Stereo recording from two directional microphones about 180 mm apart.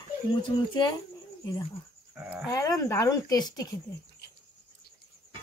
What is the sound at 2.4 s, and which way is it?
A woman's voice, 20° left (ahead or behind).